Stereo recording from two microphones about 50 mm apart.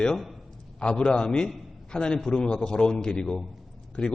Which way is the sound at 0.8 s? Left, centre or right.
Centre.